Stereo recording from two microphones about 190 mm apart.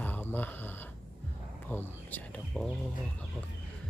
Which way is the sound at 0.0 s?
10° left (ahead or behind).